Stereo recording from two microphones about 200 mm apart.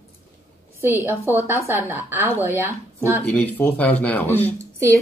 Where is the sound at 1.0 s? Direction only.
10° right (ahead or behind).